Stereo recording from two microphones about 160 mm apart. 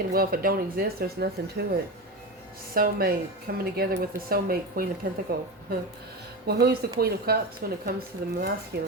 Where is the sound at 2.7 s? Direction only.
65° right (ahead or behind).